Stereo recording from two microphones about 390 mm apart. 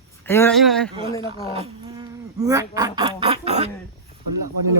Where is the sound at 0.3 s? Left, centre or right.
Centre.